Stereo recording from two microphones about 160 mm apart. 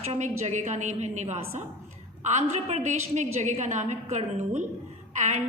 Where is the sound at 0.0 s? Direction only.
45° right (ahead or behind).